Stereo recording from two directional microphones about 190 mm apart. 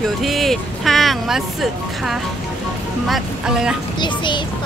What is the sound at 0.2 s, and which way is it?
Speech, centre (ahead or behind).